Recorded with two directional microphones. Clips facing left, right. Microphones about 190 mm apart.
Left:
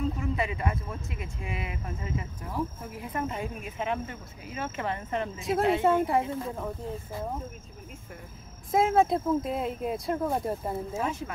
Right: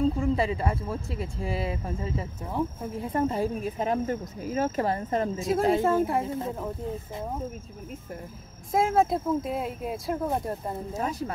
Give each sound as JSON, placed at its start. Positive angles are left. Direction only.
{"t": 0.0, "sound": "speech", "side_deg": -30}
{"t": 5.4, "sound": "speech", "side_deg": 0}
{"t": 8.7, "sound": "speech", "side_deg": 0}
{"t": 10.9, "sound": "speech", "side_deg": -35}